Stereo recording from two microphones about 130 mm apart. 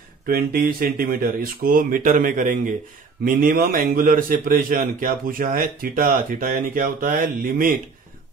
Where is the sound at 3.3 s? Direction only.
90° right.